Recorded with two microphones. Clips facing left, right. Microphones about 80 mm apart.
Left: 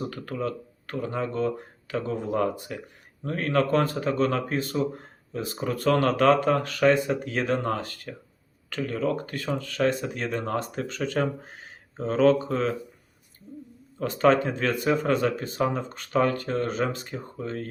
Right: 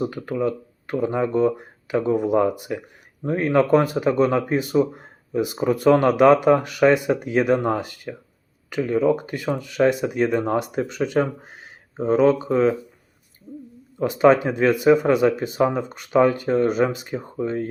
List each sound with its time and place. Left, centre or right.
0.1 s speech: centre
14.0 s speech: centre